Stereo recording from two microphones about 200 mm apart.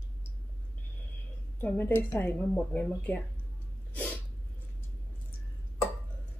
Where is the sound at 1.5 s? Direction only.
10° left (ahead or behind).